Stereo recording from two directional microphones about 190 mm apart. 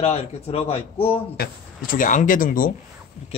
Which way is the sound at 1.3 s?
50° left (ahead or behind).